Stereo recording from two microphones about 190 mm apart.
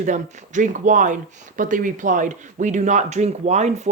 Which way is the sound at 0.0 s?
40° right (ahead or behind).